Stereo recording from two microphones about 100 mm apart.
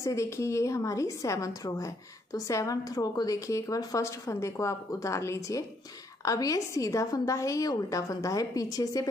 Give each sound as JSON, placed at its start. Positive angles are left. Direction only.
{"t": 0.0, "sound": "a woman's voice", "side_deg": 30}